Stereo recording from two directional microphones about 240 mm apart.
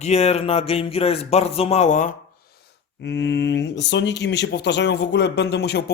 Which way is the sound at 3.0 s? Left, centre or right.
Left.